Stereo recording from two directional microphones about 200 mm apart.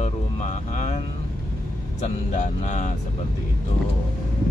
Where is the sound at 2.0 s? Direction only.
35° left (ahead or behind).